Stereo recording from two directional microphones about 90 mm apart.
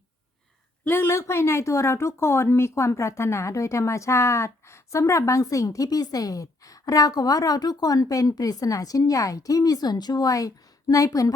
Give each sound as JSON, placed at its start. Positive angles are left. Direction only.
{"t": 0.9, "sound": "speech", "side_deg": 25}